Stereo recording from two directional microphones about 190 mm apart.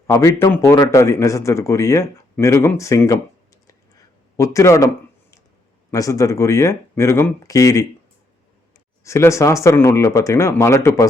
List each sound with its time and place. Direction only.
0.1 s a man's voice: 15° left (ahead or behind)
5.9 s a man's voice: 15° left (ahead or behind)
9.0 s a man's voice: 15° left (ahead or behind)